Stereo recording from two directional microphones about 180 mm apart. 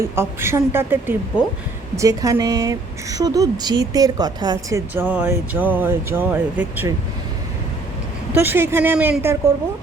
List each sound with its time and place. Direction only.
0.0 s a woman's voice: 15° right (ahead or behind)
4.9 s speech: 10° right (ahead or behind)
8.3 s speech: 10° right (ahead or behind)